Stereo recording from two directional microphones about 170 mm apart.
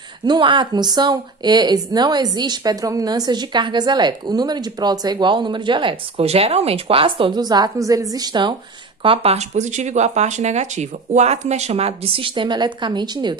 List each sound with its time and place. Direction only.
0.2 s speech: 25° right (ahead or behind)